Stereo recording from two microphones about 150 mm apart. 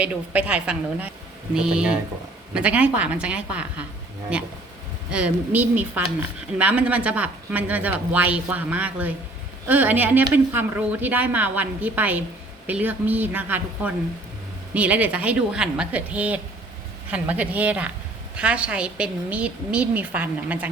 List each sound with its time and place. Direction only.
0.0 s speech: 10° right (ahead or behind)
5.1 s speech: 10° right (ahead or behind)